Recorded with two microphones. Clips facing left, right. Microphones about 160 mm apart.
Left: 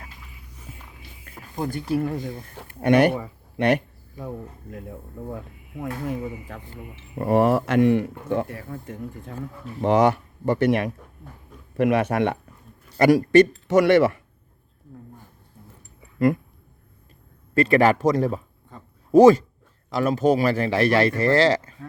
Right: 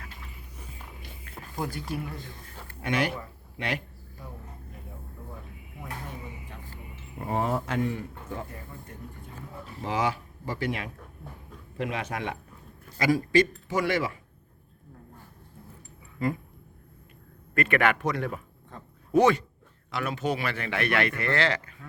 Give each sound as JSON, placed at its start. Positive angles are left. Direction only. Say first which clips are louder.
{"t": 1.5, "sound": "speech", "louder": "left 7 dB", "side_deg": 25}
{"t": 2.8, "sound": "speech", "louder": "left 11 dB", "side_deg": 65}
{"t": 4.7, "sound": "speech", "louder": "left 9 dB", "side_deg": 90}
{"t": 9.8, "sound": "speech", "louder": "left 10 dB", "side_deg": 65}
{"t": 16.1, "sound": "speech", "louder": "left 9 dB", "side_deg": 70}
{"t": 17.5, "sound": "a man's voice", "louder": "left 7 dB", "side_deg": 35}
{"t": 18.7, "sound": "speech", "louder": "left 1 dB", "side_deg": 0}
{"t": 19.1, "sound": "speech", "louder": "left 9 dB", "side_deg": 40}